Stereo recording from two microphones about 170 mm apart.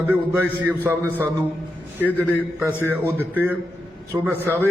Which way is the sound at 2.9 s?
10° right (ahead or behind).